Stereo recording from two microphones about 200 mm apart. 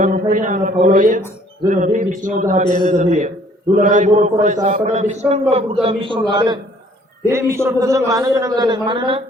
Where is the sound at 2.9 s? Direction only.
35° right (ahead or behind).